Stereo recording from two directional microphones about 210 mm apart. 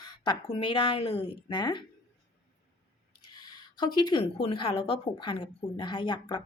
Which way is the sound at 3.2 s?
20° left (ahead or behind).